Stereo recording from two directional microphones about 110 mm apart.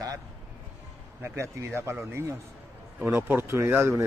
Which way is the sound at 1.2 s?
25° right (ahead or behind).